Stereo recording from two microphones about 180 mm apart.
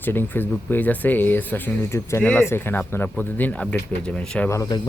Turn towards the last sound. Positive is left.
turn(degrees=15)  # may be behind; listen again after turning